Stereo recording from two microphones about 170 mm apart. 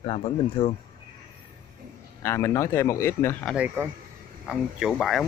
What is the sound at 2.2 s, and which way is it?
Speech, 15° left (ahead or behind).